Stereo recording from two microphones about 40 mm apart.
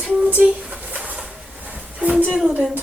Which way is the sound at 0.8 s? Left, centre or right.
Right.